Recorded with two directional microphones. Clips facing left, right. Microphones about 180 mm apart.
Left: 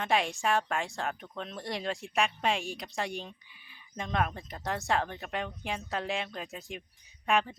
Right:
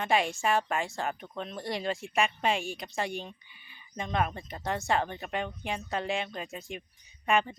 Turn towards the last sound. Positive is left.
turn(degrees=0)  # may be behind; listen again after turning